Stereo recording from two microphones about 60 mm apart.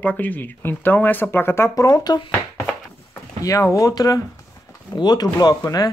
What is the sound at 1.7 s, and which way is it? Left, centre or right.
Speech, left.